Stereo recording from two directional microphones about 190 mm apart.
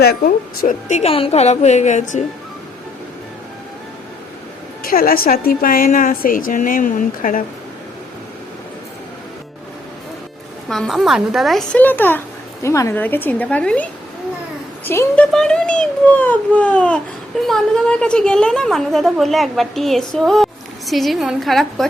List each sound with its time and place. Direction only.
0.0 s a woman's voice: 55° left (ahead or behind)
4.8 s a woman's voice: 50° left (ahead or behind)
10.7 s a woman's voice: centre (ahead or behind)